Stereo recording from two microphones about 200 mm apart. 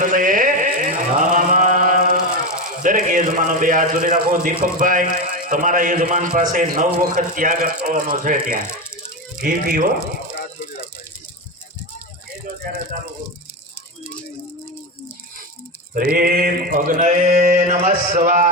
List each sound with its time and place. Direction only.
0.0 s mantra: 40° right (ahead or behind)
2.8 s a man's voice: 40° right (ahead or behind)
16.0 s a man's voice: 45° right (ahead or behind)